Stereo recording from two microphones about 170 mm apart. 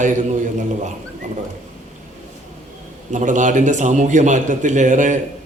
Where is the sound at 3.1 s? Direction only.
45° right (ahead or behind).